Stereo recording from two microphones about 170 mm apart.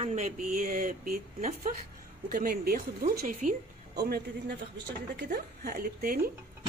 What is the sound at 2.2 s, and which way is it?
Speech, 55° right (ahead or behind).